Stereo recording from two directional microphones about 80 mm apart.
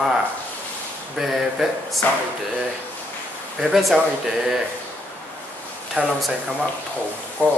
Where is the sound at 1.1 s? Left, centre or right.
Centre.